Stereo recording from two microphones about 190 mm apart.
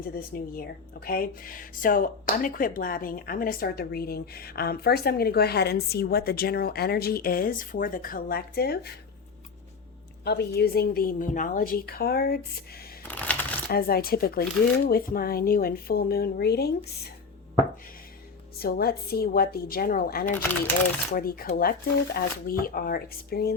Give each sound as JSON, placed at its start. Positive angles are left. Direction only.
{"t": 0.3, "sound": "speech", "side_deg": 50}
{"t": 10.2, "sound": "a woman's voice", "side_deg": 60}
{"t": 13.0, "sound": "a sound", "side_deg": 10}
{"t": 13.7, "sound": "speech", "side_deg": 50}
{"t": 18.6, "sound": "speech", "side_deg": 55}